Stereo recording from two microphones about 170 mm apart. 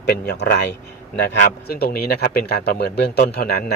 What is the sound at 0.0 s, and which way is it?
A man's voice, 75° left (ahead or behind).